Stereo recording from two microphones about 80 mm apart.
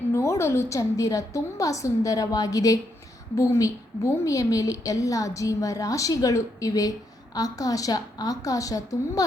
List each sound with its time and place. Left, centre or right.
0.1 s a woman's voice: left